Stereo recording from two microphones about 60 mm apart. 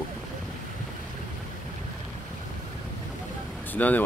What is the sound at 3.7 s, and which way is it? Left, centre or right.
Speech, left.